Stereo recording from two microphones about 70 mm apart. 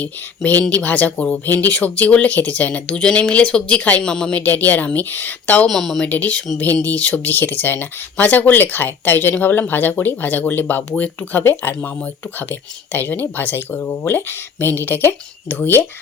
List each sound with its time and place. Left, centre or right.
0.0 s speech: left
5.6 s speech: centre
6.1 s speech: left